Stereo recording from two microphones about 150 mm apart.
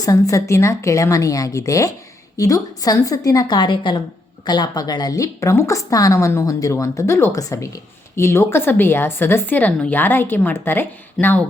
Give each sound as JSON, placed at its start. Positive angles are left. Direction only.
{"t": 0.0, "sound": "a woman's voice", "side_deg": 20}